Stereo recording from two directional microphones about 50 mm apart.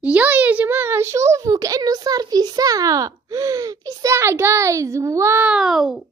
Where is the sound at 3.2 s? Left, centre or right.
Right.